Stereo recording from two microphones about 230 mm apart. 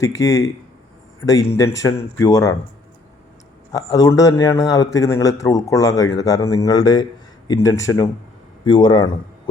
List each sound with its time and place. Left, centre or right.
0.0 s a man's voice: centre
3.7 s a man's voice: centre